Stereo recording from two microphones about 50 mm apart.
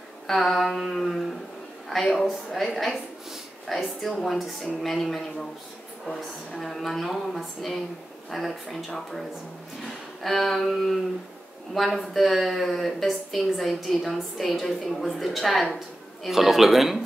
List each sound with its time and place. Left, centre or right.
0.3 s a woman's voice: centre
10.2 s a woman's voice: centre